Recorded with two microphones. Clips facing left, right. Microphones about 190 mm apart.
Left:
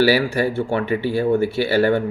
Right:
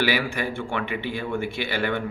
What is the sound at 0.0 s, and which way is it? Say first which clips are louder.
Speech: left 8 dB; 40° left (ahead or behind).